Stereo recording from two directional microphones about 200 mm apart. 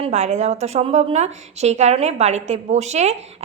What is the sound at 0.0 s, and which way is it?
A woman's voice, 35° right (ahead or behind).